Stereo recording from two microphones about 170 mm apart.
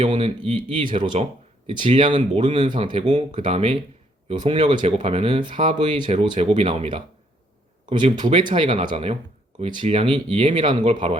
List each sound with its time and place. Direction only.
0.1 s speech: 30° right (ahead or behind)
10.8 s speech: 40° right (ahead or behind)